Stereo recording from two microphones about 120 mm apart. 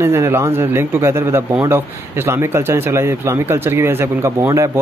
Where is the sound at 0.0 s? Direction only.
20° right (ahead or behind).